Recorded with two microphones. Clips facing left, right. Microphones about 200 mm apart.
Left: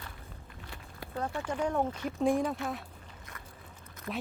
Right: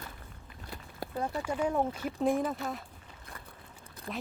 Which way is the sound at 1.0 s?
40° right (ahead or behind).